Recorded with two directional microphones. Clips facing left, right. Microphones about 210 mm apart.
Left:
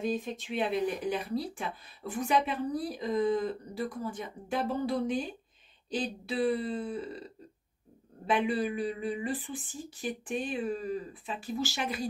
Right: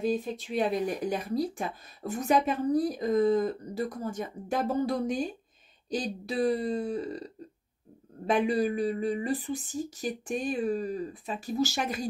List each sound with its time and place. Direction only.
0.0 s speech: 40° right (ahead or behind)
8.3 s speech: 40° right (ahead or behind)